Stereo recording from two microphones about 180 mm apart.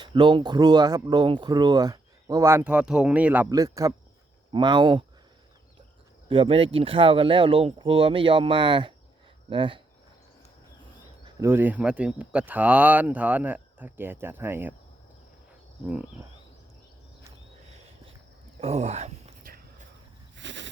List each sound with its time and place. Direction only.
0.0 s speech: 25° right (ahead or behind); by 3.5 s 10° right (ahead or behind)
3.5 s speech: 20° right (ahead or behind)
6.2 s speech: 30° right (ahead or behind)
11.3 s speech: 10° right (ahead or behind)
18.6 s speech: 40° right (ahead or behind)
20.3 s goat: 90° right